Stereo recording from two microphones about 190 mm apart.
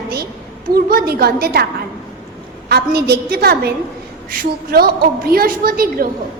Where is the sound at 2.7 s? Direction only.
55° right (ahead or behind).